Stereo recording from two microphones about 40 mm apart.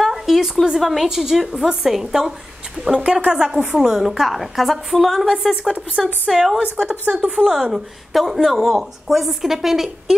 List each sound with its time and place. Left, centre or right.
0.0 s a sound: centre
0.7 s a woman's voice: centre
3.1 s a woman's voice: right
6.6 s a woman's voice: right; by 10.1 s centre